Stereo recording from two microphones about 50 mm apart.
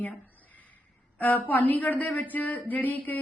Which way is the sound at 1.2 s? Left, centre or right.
Left.